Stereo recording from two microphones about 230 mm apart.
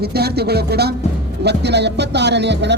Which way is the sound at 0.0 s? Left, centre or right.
Right.